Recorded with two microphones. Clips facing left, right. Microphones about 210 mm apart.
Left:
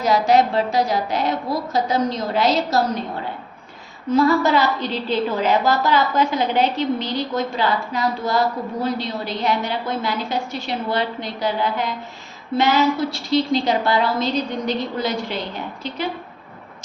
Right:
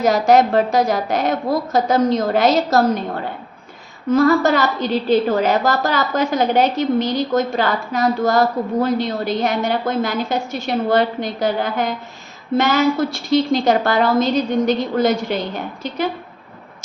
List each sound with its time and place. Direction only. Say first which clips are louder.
0.0 s a woman's voice: right 3 dB; 45° right (ahead or behind)
4.1 s a woman's voice: right 2 dB; 45° right (ahead or behind)